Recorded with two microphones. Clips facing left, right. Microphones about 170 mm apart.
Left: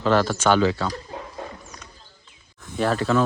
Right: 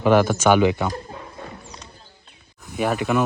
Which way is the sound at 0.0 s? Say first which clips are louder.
Right 3 dB; 15° right (ahead or behind).